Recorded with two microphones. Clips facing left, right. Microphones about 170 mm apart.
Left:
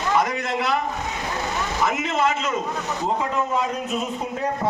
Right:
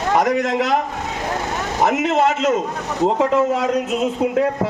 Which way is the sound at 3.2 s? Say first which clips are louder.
Right 7 dB; 90° right.